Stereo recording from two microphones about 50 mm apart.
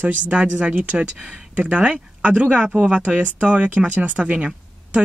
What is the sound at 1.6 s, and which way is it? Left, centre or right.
Speech, right.